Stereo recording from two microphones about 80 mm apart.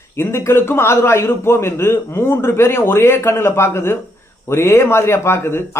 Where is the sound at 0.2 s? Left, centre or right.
Left.